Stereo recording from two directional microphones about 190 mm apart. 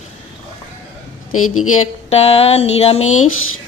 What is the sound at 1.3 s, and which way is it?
Speech, 90° left.